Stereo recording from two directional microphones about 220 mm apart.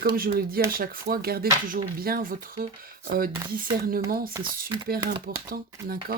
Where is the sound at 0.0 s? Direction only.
45° right (ahead or behind).